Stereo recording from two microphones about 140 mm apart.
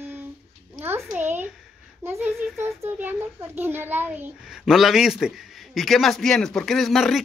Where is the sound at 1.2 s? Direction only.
15° right (ahead or behind).